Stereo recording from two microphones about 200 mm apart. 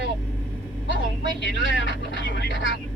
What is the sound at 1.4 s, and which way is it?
Speech, 65° left (ahead or behind).